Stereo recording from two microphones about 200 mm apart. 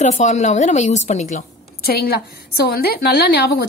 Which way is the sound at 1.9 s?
50° left (ahead or behind).